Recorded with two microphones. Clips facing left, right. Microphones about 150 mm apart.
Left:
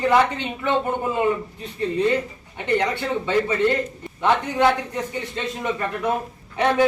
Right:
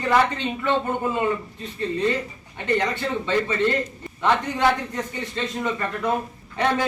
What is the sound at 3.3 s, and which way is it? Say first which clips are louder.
A man's voice: left 2 dB; 10° left (ahead or behind).